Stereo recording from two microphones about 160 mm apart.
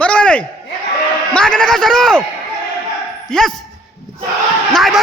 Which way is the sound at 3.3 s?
5° left (ahead or behind).